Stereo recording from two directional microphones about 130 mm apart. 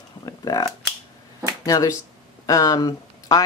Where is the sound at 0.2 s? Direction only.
30° left (ahead or behind).